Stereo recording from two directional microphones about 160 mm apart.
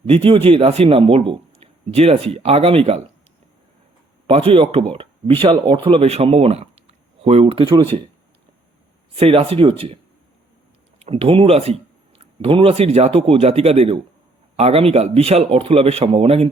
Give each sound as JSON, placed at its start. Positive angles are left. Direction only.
{"t": 0.1, "sound": "speech", "side_deg": -35}
{"t": 4.3, "sound": "speech", "side_deg": -35}
{"t": 9.1, "sound": "speech", "side_deg": -35}
{"t": 11.0, "sound": "speech", "side_deg": -35}